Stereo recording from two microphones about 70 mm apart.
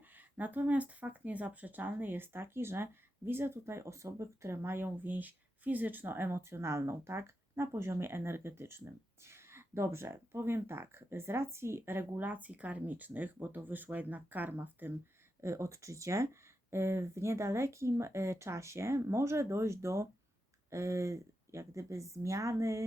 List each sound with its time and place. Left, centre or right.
0.2 s speech: right
15.4 s speech: right